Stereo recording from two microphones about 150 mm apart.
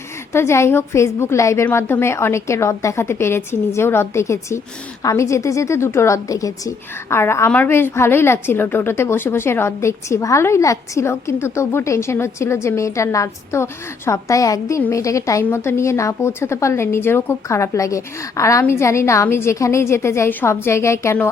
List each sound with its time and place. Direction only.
0.3 s a woman's voice: 20° left (ahead or behind)